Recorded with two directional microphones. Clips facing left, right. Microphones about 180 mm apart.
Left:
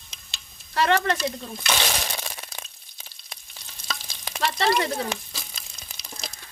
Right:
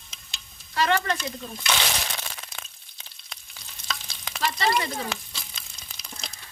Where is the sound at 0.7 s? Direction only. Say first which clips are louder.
Left 2 dB; 65° left (ahead or behind).